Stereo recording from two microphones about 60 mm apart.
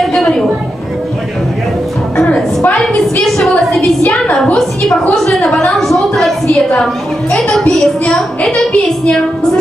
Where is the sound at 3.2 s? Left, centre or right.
Centre.